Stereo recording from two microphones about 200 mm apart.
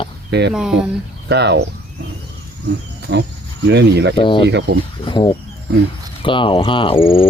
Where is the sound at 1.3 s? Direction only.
55° right (ahead or behind).